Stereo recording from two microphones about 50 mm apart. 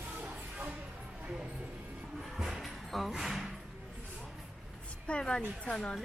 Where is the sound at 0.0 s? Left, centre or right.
Right.